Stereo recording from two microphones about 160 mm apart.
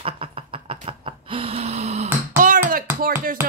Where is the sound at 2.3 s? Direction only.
55° right (ahead or behind).